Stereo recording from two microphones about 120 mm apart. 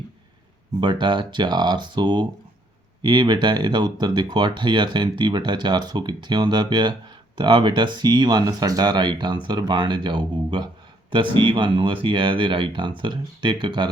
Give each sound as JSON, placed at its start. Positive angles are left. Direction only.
{"t": 0.8, "sound": "speech", "side_deg": -40}